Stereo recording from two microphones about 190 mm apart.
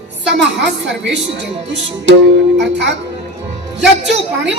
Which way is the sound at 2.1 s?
70° right (ahead or behind).